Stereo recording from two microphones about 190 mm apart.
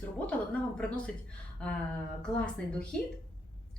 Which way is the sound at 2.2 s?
5° left (ahead or behind).